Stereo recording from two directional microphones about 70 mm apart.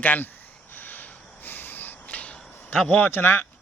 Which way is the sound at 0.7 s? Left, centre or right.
Left.